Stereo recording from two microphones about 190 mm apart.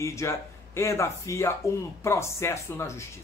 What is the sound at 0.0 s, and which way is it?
Speech, 15° left (ahead or behind).